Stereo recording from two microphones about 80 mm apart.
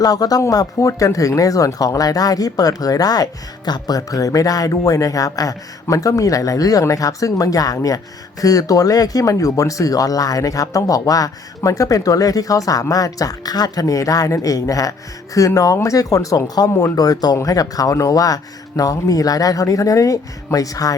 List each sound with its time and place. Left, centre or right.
0.0 s speech: left